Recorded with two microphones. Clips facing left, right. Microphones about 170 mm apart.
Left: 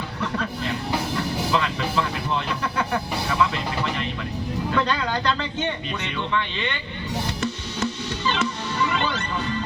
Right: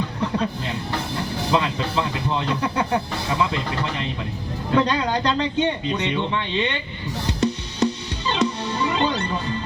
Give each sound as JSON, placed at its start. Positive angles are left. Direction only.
{"t": 1.5, "sound": "speech", "side_deg": -20}
{"t": 4.7, "sound": "speech", "side_deg": -20}
{"t": 7.4, "sound": "music", "side_deg": -15}